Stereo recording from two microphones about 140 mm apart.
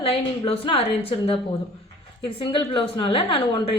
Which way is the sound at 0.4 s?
40° left (ahead or behind).